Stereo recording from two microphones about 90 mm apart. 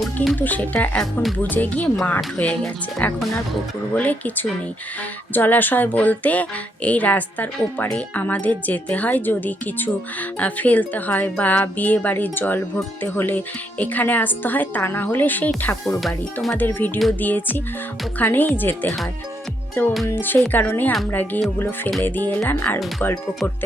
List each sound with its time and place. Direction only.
0.3 s speech: 20° left (ahead or behind)
15.9 s speech: centre (ahead or behind)
16.6 s speech: 20° left (ahead or behind)
20.1 s speech: 20° left (ahead or behind)